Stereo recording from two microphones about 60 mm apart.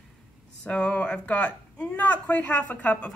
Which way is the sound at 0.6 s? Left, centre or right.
Centre.